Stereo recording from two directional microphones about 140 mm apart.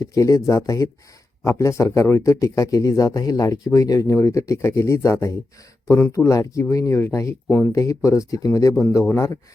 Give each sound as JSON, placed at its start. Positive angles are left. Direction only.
{"t": 0.0, "sound": "speech", "side_deg": 25}
{"t": 7.7, "sound": "speech", "side_deg": 20}